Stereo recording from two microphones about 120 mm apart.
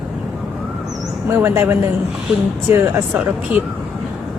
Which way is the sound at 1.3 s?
20° right (ahead or behind).